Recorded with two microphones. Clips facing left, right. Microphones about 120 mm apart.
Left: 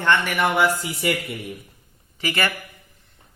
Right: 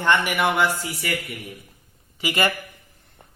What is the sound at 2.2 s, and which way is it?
Speech, 15° right (ahead or behind).